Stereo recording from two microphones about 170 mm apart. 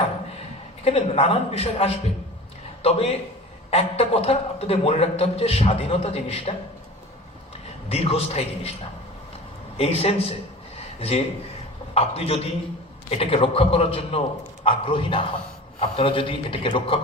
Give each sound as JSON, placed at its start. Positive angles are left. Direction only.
{"t": 0.9, "sound": "a man's voice", "side_deg": 35}
{"t": 7.9, "sound": "a man's voice", "side_deg": 35}
{"t": 9.7, "sound": "a man's voice", "side_deg": 35}
{"t": 11.9, "sound": "a man's voice", "side_deg": 35}